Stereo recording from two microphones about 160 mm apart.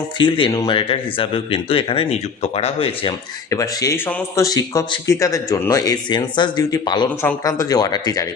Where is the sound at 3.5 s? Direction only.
20° left (ahead or behind).